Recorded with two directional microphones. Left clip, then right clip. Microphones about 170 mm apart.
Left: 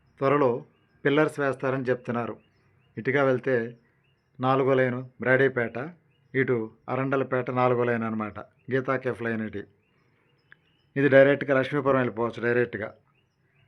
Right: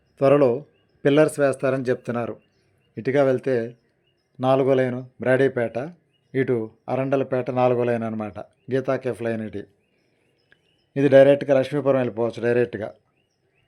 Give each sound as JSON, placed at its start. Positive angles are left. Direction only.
{"t": 0.2, "sound": "speech", "side_deg": -25}